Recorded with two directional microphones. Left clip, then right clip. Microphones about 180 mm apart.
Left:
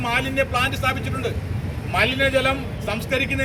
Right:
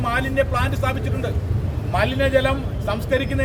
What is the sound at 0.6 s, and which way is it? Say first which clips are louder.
A man's voice: left 2 dB; 15° right (ahead or behind).